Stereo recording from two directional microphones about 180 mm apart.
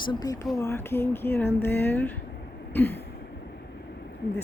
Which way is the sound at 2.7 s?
10° left (ahead or behind).